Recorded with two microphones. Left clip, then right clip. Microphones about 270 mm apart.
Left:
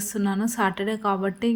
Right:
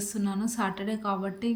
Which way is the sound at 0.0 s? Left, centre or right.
Centre.